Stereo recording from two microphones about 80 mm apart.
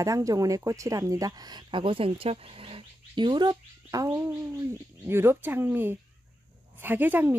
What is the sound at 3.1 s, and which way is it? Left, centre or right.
Speech, right.